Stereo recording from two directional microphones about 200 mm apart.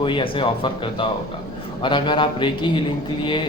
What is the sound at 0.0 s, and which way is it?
Speech, 25° left (ahead or behind).